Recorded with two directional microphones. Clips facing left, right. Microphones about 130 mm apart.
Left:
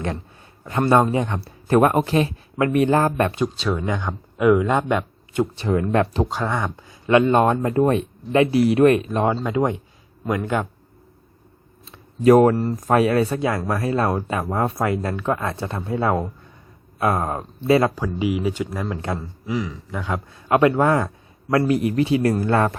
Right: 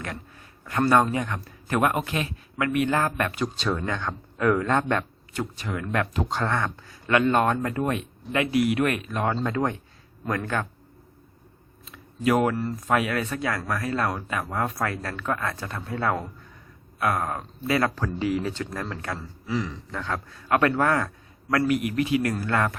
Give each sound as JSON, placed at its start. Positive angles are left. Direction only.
{"t": 0.6, "sound": "speech", "side_deg": 25}
{"t": 3.4, "sound": "speech", "side_deg": 5}
{"t": 6.2, "sound": "a man's voice", "side_deg": 5}
{"t": 7.8, "sound": "a man's voice", "side_deg": 35}
{"t": 11.9, "sound": "a man's voice", "side_deg": 35}
{"t": 17.9, "sound": "speech", "side_deg": 10}
{"t": 18.9, "sound": "a man's voice", "side_deg": 25}
{"t": 19.5, "sound": "a man's voice", "side_deg": 10}